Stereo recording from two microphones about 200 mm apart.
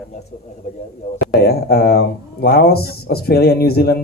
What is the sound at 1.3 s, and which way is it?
Speech, 50° left (ahead or behind).